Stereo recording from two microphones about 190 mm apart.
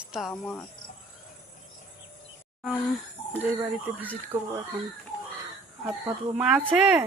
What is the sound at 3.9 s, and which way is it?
Speech, 15° right (ahead or behind).